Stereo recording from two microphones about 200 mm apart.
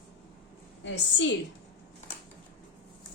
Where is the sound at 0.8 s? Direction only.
65° left (ahead or behind).